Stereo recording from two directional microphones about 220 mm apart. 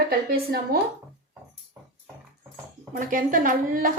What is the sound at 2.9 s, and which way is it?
Speech, 35° right (ahead or behind).